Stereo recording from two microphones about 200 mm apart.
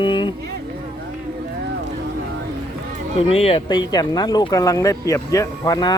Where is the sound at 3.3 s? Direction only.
30° left (ahead or behind).